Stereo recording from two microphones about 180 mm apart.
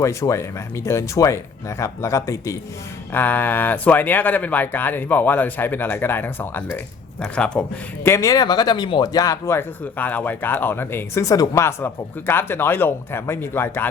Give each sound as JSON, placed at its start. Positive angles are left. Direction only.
{"t": 0.0, "sound": "speech", "side_deg": 15}
{"t": 8.0, "sound": "speech", "side_deg": 15}